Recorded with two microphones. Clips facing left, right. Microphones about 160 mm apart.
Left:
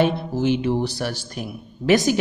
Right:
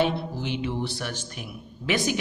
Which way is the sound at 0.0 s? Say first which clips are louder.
Left 6 dB; 45° left (ahead or behind).